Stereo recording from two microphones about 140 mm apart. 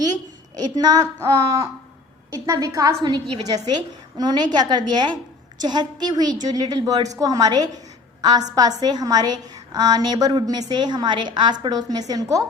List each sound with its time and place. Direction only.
0.0 s a woman's voice: 30° right (ahead or behind)